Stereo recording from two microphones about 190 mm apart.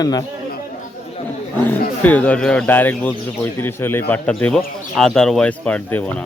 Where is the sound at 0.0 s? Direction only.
20° left (ahead or behind).